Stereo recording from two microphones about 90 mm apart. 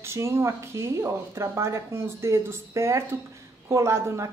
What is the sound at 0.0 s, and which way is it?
A woman's voice, 30° right (ahead or behind).